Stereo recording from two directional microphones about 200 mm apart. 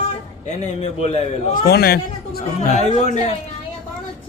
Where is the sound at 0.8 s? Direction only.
30° left (ahead or behind).